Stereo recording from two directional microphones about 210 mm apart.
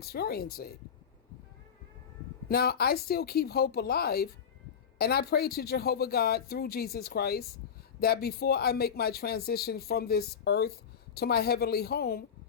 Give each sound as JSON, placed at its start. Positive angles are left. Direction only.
{"t": 0.0, "sound": "speech", "side_deg": 50}
{"t": 2.5, "sound": "speech", "side_deg": 50}